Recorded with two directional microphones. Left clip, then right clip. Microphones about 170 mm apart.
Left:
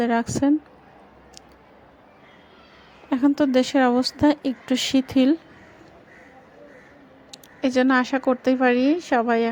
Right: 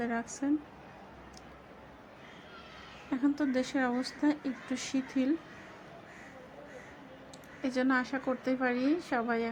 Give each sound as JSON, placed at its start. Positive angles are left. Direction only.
{"t": 0.0, "sound": "speech", "side_deg": 45}
{"t": 3.1, "sound": "speech", "side_deg": 40}
{"t": 7.3, "sound": "speech", "side_deg": 40}